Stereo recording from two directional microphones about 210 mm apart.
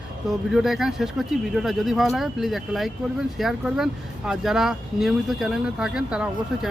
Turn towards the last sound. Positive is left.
turn(degrees=-5)  # may be behind; listen again after turning